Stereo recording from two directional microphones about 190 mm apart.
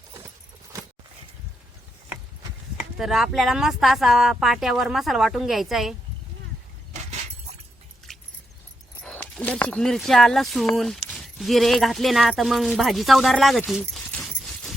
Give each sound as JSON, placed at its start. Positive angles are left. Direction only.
{"t": 2.7, "sound": "speech", "side_deg": 0}
{"t": 8.1, "sound": "keys jangling", "side_deg": 0}
{"t": 9.0, "sound": "speech", "side_deg": 10}
{"t": 13.7, "sound": "a sound", "side_deg": 0}